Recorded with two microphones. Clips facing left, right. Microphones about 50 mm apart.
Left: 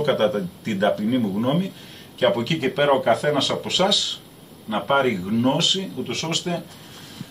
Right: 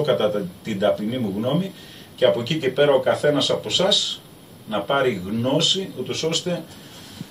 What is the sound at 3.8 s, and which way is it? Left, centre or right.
Speech, left.